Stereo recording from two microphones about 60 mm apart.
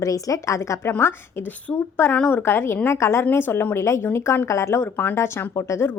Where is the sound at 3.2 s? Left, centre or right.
Left.